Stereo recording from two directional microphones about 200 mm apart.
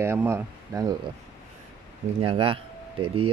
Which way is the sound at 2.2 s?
25° right (ahead or behind).